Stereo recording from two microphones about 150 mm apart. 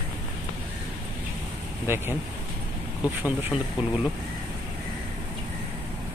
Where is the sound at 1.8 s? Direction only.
15° right (ahead or behind).